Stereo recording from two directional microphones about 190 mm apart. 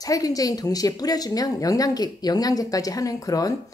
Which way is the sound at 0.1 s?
20° left (ahead or behind).